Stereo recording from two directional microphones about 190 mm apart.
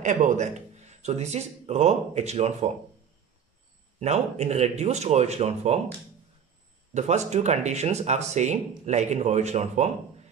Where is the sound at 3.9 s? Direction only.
35° right (ahead or behind).